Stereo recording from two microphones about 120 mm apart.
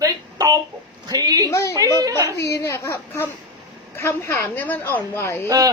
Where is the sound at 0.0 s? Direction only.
30° right (ahead or behind).